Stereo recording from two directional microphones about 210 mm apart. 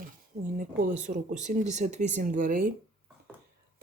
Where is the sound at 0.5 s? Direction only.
40° right (ahead or behind).